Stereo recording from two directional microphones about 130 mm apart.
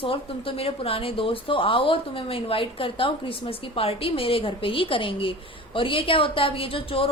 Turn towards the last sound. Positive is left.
turn(degrees=45)  # may be behind; listen again after turning